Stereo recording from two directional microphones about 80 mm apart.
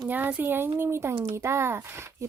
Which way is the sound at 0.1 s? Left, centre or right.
Right.